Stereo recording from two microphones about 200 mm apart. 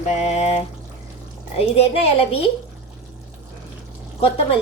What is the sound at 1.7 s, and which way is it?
Speech, 30° left (ahead or behind).